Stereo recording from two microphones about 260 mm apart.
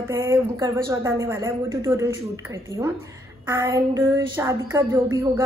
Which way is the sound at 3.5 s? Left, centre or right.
Centre.